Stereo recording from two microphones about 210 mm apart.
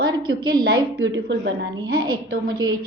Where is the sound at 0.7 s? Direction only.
70° right (ahead or behind); by 2.0 s 55° right (ahead or behind).